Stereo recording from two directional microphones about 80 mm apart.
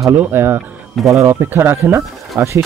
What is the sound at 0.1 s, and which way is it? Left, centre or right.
Speech, right.